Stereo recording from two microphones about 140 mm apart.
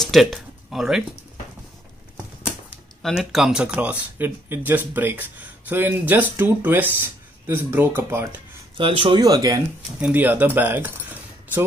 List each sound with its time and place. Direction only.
0.0 s a sound: centre (ahead or behind)
3.0 s speech: centre (ahead or behind); by 8.4 s 15° right (ahead or behind)
8.7 s speech: 40° right (ahead or behind)
9.9 s speech: 10° right (ahead or behind)